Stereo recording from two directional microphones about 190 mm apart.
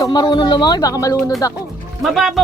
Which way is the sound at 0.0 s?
20° left (ahead or behind).